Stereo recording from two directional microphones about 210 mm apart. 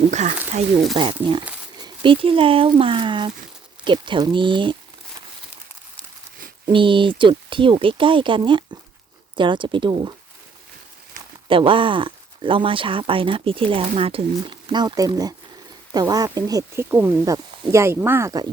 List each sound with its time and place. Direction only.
0.1 s speech: 35° right (ahead or behind)
0.9 s speech: 25° right (ahead or behind)
6.7 s speech: 25° right (ahead or behind)
11.4 s speech: 25° right (ahead or behind)